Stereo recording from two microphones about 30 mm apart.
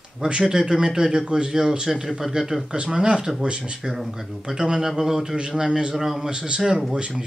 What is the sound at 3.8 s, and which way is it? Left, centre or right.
Speech, centre.